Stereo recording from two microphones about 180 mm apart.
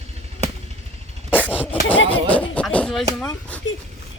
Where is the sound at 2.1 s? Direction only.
10° left (ahead or behind).